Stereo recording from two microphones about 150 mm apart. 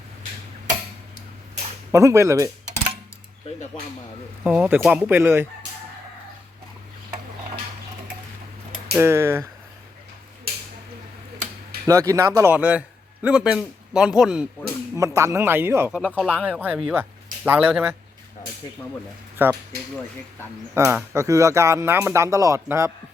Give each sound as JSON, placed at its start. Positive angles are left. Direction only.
{"t": 1.9, "sound": "speech", "side_deg": -20}
{"t": 4.4, "sound": "speech", "side_deg": -10}
{"t": 9.0, "sound": "speech", "side_deg": -15}
{"t": 11.9, "sound": "a man's voice", "side_deg": -20}
{"t": 14.9, "sound": "speech", "side_deg": -20}
{"t": 15.9, "sound": "a man's voice", "side_deg": -5}
{"t": 16.1, "sound": "speech", "side_deg": 5}
{"t": 16.4, "sound": "speech", "side_deg": -10}
{"t": 19.4, "sound": "speech", "side_deg": -15}
{"t": 20.7, "sound": "speech", "side_deg": -20}